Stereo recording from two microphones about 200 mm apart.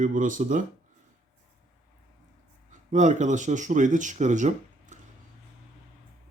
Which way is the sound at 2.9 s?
40° right (ahead or behind).